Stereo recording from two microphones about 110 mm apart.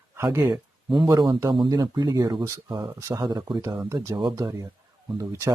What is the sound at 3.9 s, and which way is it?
Speech, 30° right (ahead or behind).